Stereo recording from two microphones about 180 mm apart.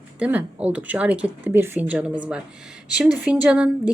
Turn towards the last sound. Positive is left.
turn(degrees=-5)  # may be behind; listen again after turning